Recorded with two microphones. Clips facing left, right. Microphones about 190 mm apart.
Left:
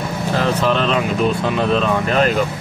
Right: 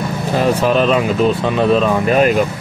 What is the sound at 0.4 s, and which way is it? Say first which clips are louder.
Speech: right 4 dB; 10° right (ahead or behind).